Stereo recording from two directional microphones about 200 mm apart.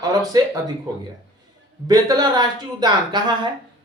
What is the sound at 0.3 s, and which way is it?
Speech, 20° right (ahead or behind).